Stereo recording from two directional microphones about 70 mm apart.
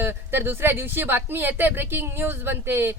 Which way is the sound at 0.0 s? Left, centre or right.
Right.